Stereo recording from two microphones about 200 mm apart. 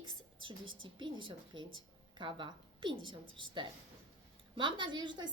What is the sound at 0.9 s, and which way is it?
Speech, 25° right (ahead or behind).